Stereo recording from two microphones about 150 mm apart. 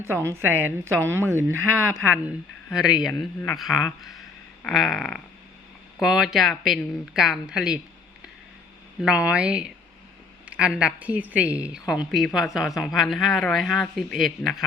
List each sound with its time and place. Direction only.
0.0 s a woman's voice: 15° right (ahead or behind); by 3.2 s centre (ahead or behind)
4.6 s a woman's voice: centre (ahead or behind)
9.0 s a woman's voice: 5° right (ahead or behind)